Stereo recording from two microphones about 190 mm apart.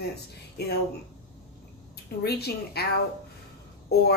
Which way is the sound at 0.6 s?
60° left (ahead or behind).